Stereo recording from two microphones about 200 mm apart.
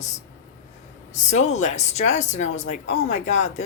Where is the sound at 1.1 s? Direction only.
35° left (ahead or behind).